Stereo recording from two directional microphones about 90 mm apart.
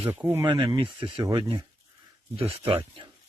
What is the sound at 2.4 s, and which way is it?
Speech, 90° right.